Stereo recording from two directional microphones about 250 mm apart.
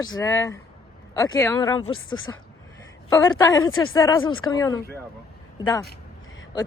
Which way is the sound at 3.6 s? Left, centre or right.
Left.